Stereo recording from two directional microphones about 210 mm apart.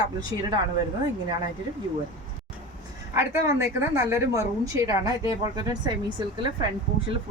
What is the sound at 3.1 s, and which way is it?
A woman's voice, 15° right (ahead or behind).